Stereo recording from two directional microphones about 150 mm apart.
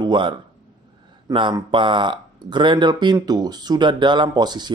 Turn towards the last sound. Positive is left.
turn(degrees=-30)  # may be behind; listen again after turning